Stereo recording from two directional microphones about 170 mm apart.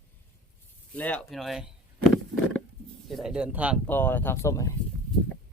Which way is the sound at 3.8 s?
10° left (ahead or behind).